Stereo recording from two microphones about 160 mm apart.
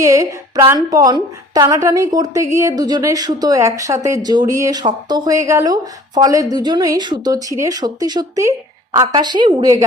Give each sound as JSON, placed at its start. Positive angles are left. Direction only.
{"t": 0.0, "sound": "a woman's voice", "side_deg": -20}